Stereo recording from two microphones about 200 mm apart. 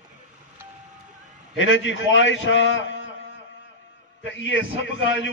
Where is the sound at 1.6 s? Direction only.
70° left (ahead or behind).